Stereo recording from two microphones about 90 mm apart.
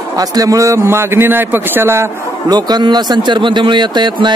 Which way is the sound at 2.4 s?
50° right (ahead or behind).